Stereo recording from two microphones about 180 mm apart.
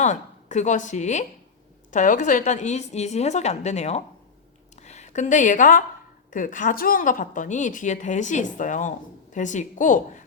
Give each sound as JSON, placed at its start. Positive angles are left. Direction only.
{"t": 0.0, "sound": "a woman's voice", "side_deg": 40}